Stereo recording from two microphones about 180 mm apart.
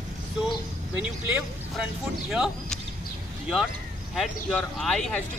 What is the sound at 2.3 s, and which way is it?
Speech, 5° right (ahead or behind).